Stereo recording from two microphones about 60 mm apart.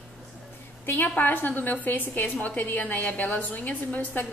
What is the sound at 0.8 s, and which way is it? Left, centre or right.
A woman's voice, left.